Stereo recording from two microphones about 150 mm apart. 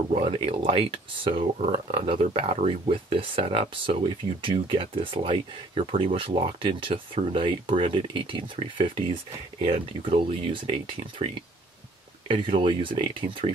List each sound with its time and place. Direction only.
0.1 s speech: 40° right (ahead or behind)
12.3 s speech: 35° right (ahead or behind)